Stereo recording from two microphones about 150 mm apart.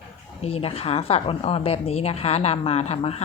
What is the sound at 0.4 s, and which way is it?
A woman's voice, 40° left (ahead or behind).